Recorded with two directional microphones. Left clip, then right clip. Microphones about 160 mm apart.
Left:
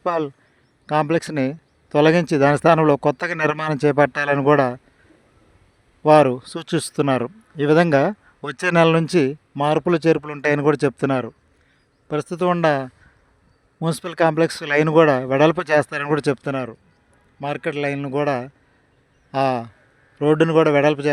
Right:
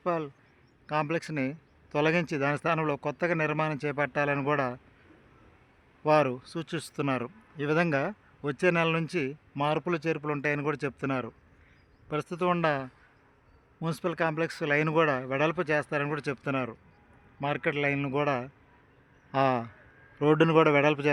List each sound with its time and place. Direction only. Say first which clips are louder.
0.0 s a man's voice: left 9 dB; 50° left (ahead or behind)
6.0 s a man's voice: left 11 dB; 45° left (ahead or behind)
12.0 s a man's voice: left 8 dB; 35° left (ahead or behind)
16.4 s a man's voice: left 6 dB; 30° left (ahead or behind)